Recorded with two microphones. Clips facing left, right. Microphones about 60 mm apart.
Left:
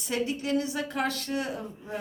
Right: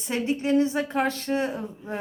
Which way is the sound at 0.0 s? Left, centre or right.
Right.